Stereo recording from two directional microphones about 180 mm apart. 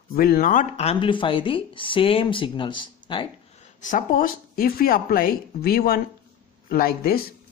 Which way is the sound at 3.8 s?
45° left (ahead or behind).